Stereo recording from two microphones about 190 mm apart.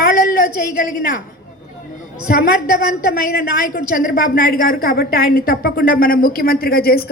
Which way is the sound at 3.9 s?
45° left (ahead or behind).